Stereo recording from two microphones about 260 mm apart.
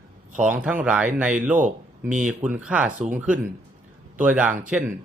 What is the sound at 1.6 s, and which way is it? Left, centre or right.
Speech, right.